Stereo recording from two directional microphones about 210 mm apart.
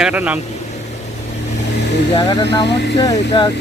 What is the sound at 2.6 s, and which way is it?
Speech, 55° left (ahead or behind).